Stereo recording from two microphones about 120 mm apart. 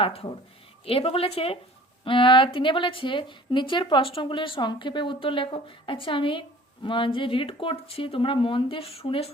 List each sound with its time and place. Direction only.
0.0 s a woman's voice: 55° left (ahead or behind)